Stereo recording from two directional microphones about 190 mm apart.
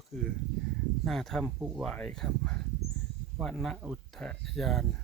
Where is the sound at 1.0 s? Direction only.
Centre (ahead or behind).